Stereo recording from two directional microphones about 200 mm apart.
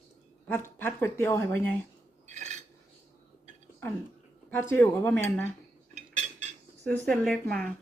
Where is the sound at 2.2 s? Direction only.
35° right (ahead or behind).